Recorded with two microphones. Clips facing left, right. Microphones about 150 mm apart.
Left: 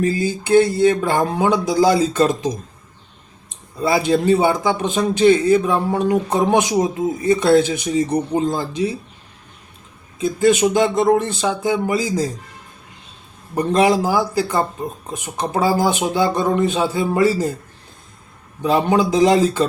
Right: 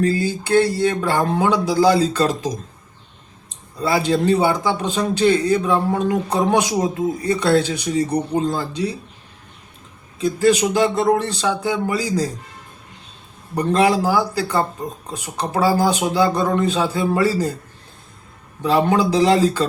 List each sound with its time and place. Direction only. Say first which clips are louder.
0.0 s a man's voice: even; 20° left (ahead or behind)
3.8 s a man's voice: left 2 dB; 20° left (ahead or behind)
10.2 s a man's voice: left 1 dB; 20° left (ahead or behind)
13.6 s a man's voice: left 1 dB; 20° left (ahead or behind)
18.6 s a man's voice: even; 20° left (ahead or behind)